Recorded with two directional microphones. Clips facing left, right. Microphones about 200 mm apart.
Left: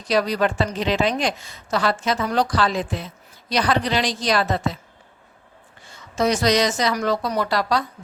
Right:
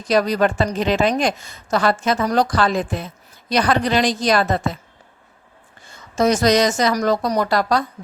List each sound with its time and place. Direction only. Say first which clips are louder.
0.0 s a woman's voice: right 3 dB; 45° right (ahead or behind)
6.1 s a woman's voice: right 3 dB; 45° right (ahead or behind)